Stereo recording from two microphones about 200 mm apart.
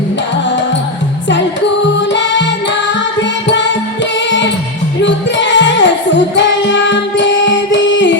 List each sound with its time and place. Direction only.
2.0 s music: 65° left (ahead or behind)